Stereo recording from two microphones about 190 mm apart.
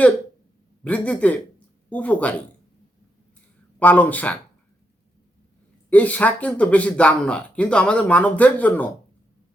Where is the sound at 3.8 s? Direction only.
10° left (ahead or behind).